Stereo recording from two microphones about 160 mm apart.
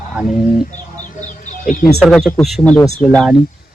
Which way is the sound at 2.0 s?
5° left (ahead or behind).